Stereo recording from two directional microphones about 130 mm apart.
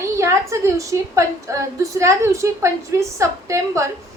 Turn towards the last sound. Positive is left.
turn(degrees=-20)  # may be behind; listen again after turning